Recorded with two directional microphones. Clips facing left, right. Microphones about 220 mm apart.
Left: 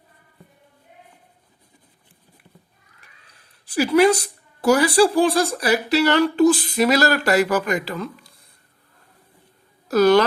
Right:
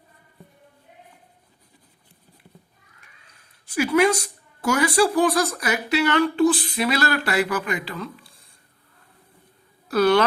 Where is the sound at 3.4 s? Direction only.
35° left (ahead or behind).